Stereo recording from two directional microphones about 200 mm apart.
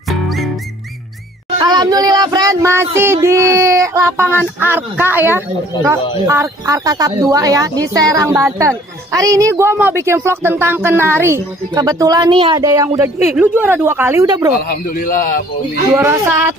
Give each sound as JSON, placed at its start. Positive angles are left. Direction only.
{"t": 0.1, "sound": "music", "side_deg": 0}
{"t": 1.6, "sound": "a woman's voice", "side_deg": -20}
{"t": 14.6, "sound": "a man's voice", "side_deg": 45}
{"t": 15.9, "sound": "a woman's voice", "side_deg": -10}